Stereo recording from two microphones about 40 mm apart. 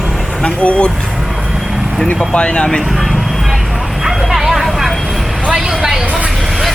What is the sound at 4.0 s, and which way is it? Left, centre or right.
Vehicle, centre.